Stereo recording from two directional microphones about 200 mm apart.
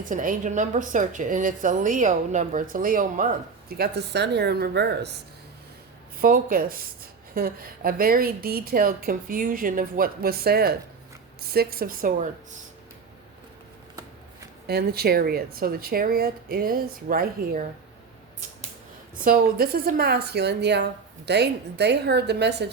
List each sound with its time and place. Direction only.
0.0 s a woman's voice: 40° right (ahead or behind)
3.7 s speech: 55° right (ahead or behind)
6.2 s speech: 45° right (ahead or behind)
14.7 s speech: 50° right (ahead or behind)
19.2 s speech: 45° right (ahead or behind)